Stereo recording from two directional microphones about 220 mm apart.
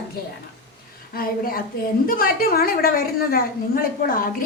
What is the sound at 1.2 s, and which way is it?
A woman's voice, 40° left (ahead or behind).